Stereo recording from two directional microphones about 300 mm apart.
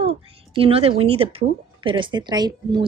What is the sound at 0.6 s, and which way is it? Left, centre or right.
A woman's voice, centre.